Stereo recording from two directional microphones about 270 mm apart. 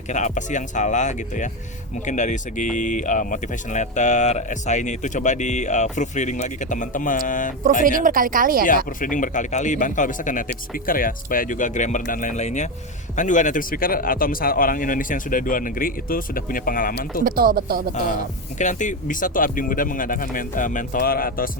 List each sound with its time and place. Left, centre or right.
0.1 s speech: left
7.9 s speech: right
9.0 s a man's voice: left
17.2 s speech: right
18.6 s a man's voice: left